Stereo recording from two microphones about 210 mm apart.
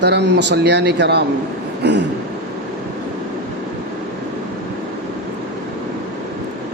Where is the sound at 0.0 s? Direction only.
55° right (ahead or behind).